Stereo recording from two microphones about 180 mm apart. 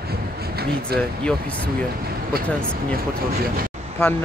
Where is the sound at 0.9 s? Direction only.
60° right (ahead or behind).